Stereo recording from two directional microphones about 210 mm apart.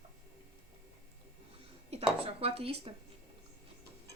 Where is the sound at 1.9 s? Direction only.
30° right (ahead or behind).